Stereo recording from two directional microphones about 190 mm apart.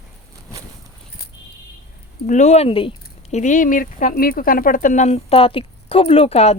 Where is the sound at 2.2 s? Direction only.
40° left (ahead or behind).